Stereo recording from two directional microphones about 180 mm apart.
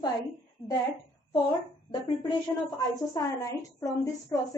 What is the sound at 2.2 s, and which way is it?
A woman's voice, 25° left (ahead or behind).